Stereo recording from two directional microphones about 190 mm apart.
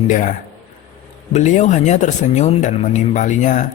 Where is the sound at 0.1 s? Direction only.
45° left (ahead or behind).